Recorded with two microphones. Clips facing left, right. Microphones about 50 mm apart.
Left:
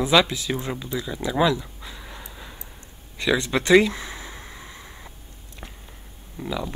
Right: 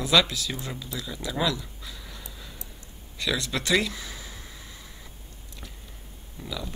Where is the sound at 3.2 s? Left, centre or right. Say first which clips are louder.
Left 6 dB; left.